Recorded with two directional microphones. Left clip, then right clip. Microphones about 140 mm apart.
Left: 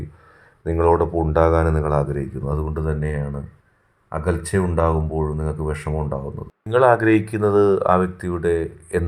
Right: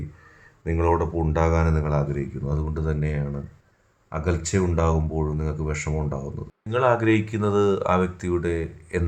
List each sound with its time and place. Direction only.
0.7 s speech: 20° left (ahead or behind)